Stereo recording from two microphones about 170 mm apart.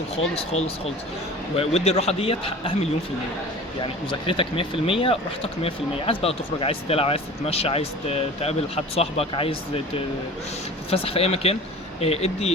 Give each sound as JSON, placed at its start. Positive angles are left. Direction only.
{"t": 1.5, "sound": "speech", "side_deg": 40}